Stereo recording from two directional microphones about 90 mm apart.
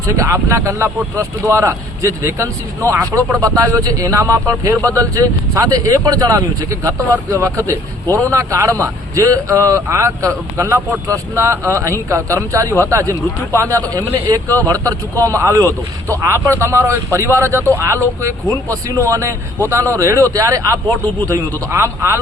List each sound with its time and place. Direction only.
0.1 s a man's voice: 35° right (ahead or behind)